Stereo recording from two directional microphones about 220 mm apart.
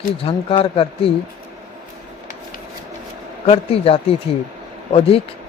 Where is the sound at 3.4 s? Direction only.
25° left (ahead or behind).